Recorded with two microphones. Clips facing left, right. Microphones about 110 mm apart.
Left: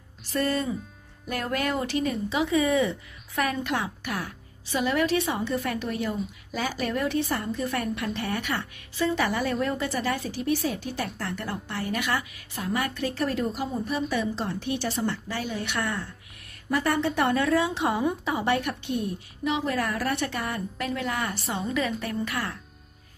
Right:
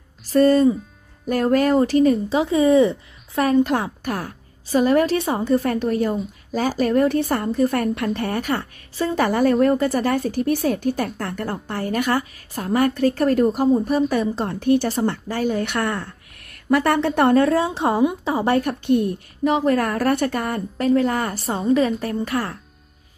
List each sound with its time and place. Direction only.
0.3 s a woman's voice: 40° right (ahead or behind)
17.5 s a woman's voice: 35° right (ahead or behind)
18.9 s a woman's voice: 60° right (ahead or behind)
19.4 s speech: 45° right (ahead or behind)
20.4 s a woman's voice: 35° right (ahead or behind)
21.6 s a woman's voice: 35° right (ahead or behind)